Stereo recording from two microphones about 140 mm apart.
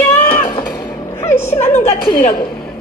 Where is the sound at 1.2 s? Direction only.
20° left (ahead or behind).